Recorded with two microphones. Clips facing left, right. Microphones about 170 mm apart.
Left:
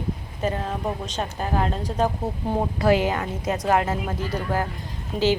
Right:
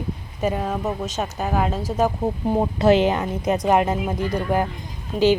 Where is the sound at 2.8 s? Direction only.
25° right (ahead or behind).